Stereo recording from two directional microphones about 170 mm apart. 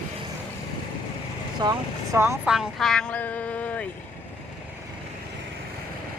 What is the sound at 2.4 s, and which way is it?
Speech, 5° right (ahead or behind).